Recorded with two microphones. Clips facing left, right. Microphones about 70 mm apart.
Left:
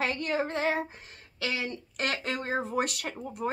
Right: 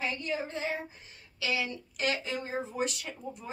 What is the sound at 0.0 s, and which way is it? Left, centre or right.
Speech, left.